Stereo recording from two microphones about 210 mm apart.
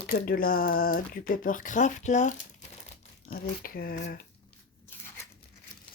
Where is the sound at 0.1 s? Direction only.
45° left (ahead or behind).